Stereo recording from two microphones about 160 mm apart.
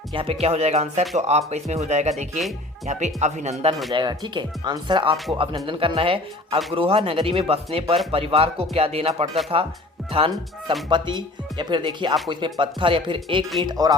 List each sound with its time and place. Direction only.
0.1 s speech: 35° right (ahead or behind)
3.9 s speech: 25° right (ahead or behind)